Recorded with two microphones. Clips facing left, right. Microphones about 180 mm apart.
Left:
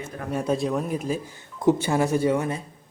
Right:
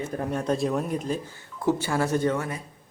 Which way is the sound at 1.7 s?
20° left (ahead or behind).